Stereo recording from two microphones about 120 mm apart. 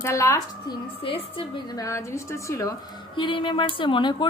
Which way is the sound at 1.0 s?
50° left (ahead or behind).